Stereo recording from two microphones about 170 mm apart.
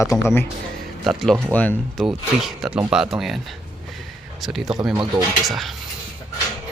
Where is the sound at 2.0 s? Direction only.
Centre (ahead or behind).